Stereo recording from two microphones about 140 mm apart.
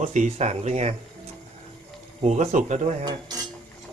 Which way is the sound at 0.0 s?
60° right (ahead or behind).